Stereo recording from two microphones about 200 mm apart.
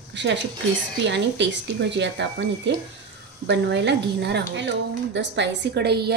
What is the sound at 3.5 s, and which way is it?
A woman's voice, 60° right (ahead or behind).